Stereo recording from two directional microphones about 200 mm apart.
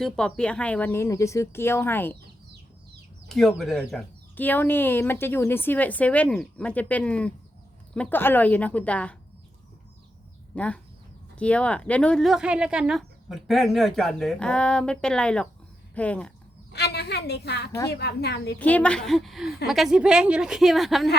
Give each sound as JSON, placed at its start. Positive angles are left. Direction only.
{"t": 0.0, "sound": "speech", "side_deg": 5}
{"t": 3.2, "sound": "speech", "side_deg": 0}
{"t": 10.5, "sound": "speech", "side_deg": 5}
{"t": 16.7, "sound": "a woman's voice", "side_deg": 55}
{"t": 18.6, "sound": "speech", "side_deg": 5}